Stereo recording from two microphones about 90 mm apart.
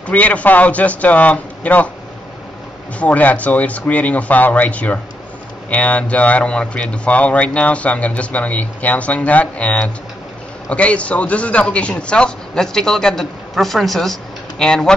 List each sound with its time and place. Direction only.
0.0 s speech: 15° left (ahead or behind)
3.0 s speech: 15° left (ahead or behind)